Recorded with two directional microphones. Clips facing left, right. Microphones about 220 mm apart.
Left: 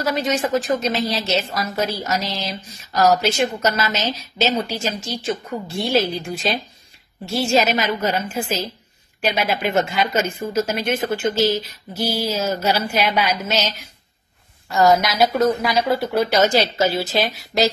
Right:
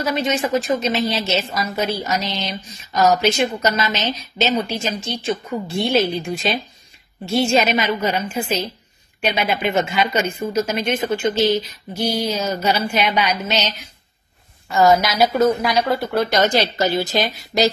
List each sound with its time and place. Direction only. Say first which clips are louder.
0.0 s a woman's voice: even; centre (ahead or behind)
4.4 s a woman's voice: even; 15° right (ahead or behind)
5.1 s a woman's voice: right 1 dB; centre (ahead or behind)